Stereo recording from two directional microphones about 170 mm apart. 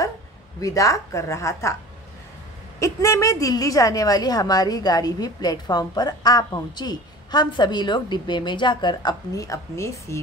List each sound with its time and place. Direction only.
0.6 s a woman's voice: 20° left (ahead or behind)
2.8 s a woman's voice: 20° left (ahead or behind)